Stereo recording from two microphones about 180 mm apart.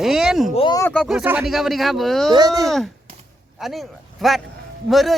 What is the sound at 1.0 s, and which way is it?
Speech, 5° right (ahead or behind).